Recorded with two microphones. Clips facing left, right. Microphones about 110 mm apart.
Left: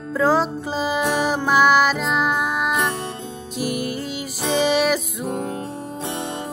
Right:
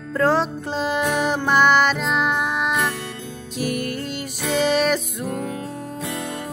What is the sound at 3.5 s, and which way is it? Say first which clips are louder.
Music: even; 5° left (ahead or behind).